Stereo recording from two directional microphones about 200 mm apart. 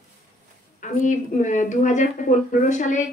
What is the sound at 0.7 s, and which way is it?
A woman's voice, 40° left (ahead or behind).